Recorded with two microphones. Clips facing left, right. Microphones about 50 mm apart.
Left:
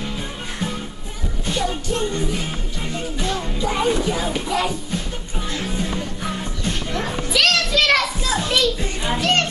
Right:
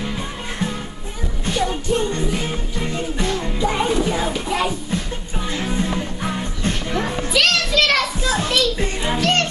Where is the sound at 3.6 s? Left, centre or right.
Centre.